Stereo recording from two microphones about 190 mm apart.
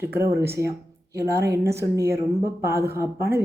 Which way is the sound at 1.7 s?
15° right (ahead or behind).